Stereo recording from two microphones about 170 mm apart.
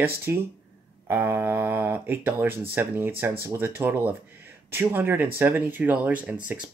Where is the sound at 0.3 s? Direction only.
15° right (ahead or behind).